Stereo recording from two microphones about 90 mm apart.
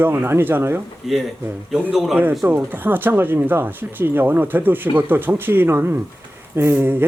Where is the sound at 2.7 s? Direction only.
20° right (ahead or behind).